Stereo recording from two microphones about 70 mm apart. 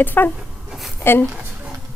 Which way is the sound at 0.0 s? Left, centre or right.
Left.